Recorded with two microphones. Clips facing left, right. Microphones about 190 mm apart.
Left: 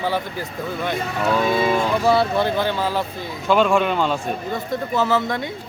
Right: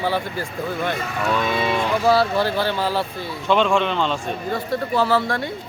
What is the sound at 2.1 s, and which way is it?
Speech, 20° left (ahead or behind).